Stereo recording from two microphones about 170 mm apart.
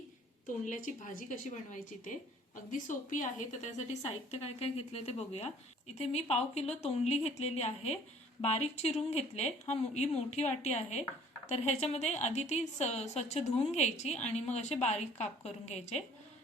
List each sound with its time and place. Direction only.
0.4 s a woman's voice: 50° left (ahead or behind)